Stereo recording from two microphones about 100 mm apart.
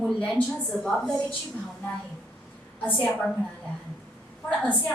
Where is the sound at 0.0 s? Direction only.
5° left (ahead or behind).